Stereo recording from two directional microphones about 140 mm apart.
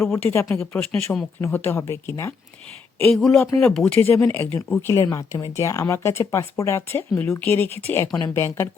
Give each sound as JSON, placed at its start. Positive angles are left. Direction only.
{"t": 0.0, "sound": "speech", "side_deg": 20}
{"t": 0.6, "sound": "speech", "side_deg": 5}
{"t": 3.2, "sound": "speech", "side_deg": 5}